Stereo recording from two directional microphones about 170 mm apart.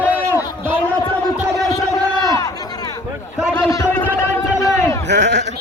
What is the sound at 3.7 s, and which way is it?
Speech, 20° left (ahead or behind).